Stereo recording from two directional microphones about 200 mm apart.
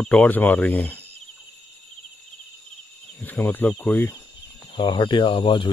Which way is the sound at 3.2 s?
10° left (ahead or behind).